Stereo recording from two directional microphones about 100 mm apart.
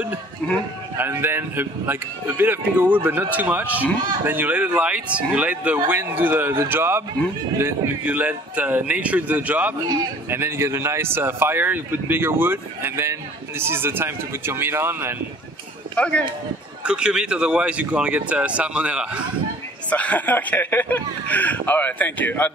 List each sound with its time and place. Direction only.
0.4 s speech: 10° left (ahead or behind)
0.9 s speech: 20° right (ahead or behind)
16.0 s speech: 10° left (ahead or behind)
16.8 s speech: 10° right (ahead or behind)
19.9 s speech: 15° left (ahead or behind)